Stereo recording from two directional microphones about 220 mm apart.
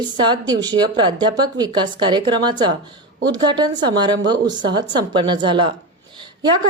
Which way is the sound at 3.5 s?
20° right (ahead or behind).